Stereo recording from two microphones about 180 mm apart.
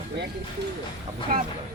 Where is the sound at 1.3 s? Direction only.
50° right (ahead or behind).